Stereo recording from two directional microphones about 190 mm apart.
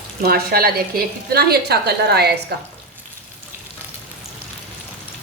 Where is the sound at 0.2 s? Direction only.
55° right (ahead or behind).